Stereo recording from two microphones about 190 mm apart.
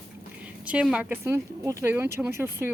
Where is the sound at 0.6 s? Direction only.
5° right (ahead or behind).